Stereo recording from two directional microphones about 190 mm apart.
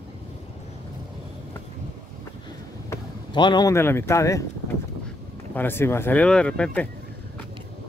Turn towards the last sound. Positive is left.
turn(degrees=5)  # may be behind; listen again after turning